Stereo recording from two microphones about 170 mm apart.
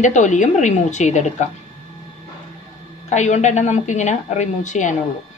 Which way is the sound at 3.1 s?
45° left (ahead or behind).